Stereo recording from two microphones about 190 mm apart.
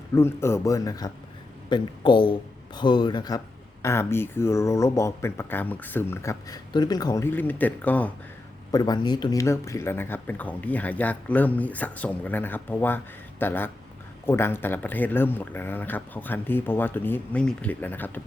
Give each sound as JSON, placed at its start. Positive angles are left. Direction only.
{"t": 0.1, "sound": "speech", "side_deg": 15}
{"t": 8.7, "sound": "speech", "side_deg": 20}